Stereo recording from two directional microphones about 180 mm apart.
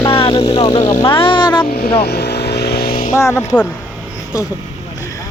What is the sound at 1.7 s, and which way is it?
Speech, 60° left (ahead or behind).